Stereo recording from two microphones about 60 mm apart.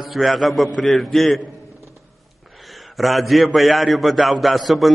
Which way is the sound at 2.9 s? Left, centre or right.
Centre.